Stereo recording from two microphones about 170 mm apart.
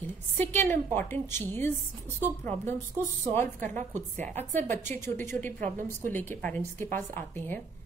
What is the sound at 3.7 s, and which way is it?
Speech, 45° right (ahead or behind).